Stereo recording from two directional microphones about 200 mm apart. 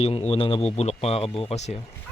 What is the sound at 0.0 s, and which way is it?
Speech, 30° left (ahead or behind).